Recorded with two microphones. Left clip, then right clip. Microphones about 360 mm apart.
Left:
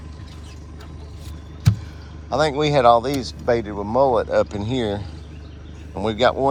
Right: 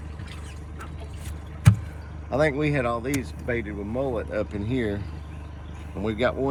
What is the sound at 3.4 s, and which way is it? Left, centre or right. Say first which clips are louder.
Speech: left 10 dB; left.